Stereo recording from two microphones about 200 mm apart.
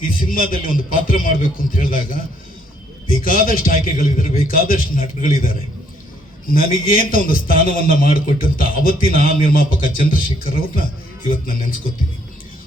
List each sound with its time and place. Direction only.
0.1 s a man's voice: 45° left (ahead or behind)